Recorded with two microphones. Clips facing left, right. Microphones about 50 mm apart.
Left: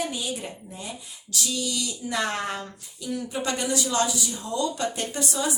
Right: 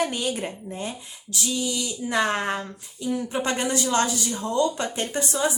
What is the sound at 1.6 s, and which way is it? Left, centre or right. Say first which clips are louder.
A woman's voice: right 2 dB; right.